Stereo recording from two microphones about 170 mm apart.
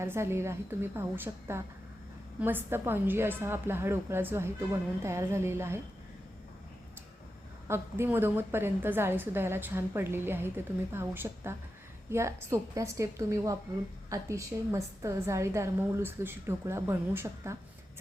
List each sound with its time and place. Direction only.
0.0 s a woman's voice: 15° right (ahead or behind)
7.7 s a woman's voice: 15° right (ahead or behind)